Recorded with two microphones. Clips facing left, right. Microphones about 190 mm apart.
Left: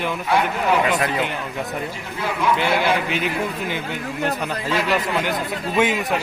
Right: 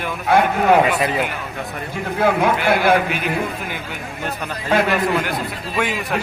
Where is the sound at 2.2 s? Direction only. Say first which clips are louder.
Right 4 dB; 55° right (ahead or behind).